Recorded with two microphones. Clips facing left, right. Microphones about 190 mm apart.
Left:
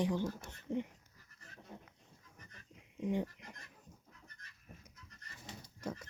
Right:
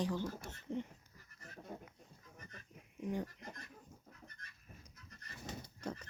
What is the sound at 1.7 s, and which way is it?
Goat, 45° right (ahead or behind).